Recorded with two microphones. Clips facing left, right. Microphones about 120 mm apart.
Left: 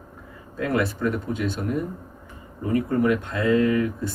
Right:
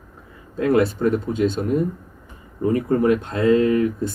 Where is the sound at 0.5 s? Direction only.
30° right (ahead or behind).